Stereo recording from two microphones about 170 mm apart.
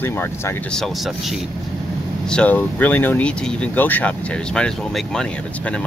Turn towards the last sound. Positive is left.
turn(degrees=5)  # may be behind; listen again after turning